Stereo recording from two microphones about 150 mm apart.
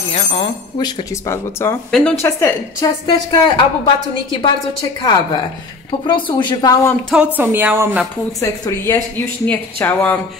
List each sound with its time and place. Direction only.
0.1 s speech: 45° left (ahead or behind)
0.7 s speech: 25° left (ahead or behind)
1.9 s speech: 5° left (ahead or behind)
2.2 s speech: 20° left (ahead or behind)
3.1 s a woman's voice: 30° left (ahead or behind)
5.9 s speech: 35° left (ahead or behind)
7.3 s speech: 10° right (ahead or behind)
8.4 s speech: 20° left (ahead or behind)